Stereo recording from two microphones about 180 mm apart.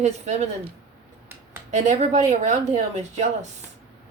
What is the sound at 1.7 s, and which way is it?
Speech, 40° right (ahead or behind).